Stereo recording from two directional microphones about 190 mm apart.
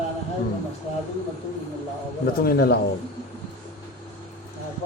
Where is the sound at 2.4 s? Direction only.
55° left (ahead or behind).